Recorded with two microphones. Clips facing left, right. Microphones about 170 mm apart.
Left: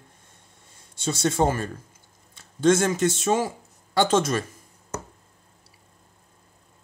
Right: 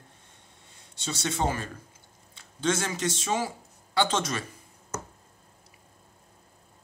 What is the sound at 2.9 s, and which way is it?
Speech, 45° left (ahead or behind).